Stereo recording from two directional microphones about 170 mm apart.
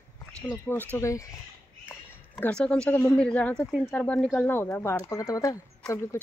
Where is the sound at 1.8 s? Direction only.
10° left (ahead or behind).